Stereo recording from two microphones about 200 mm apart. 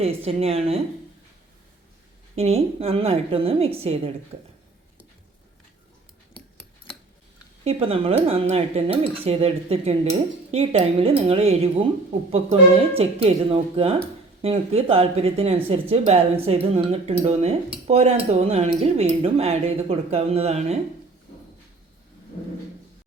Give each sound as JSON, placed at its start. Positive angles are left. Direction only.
{"t": 0.0, "sound": "speech", "side_deg": -30}
{"t": 2.3, "sound": "speech", "side_deg": -30}
{"t": 7.6, "sound": "speech", "side_deg": -30}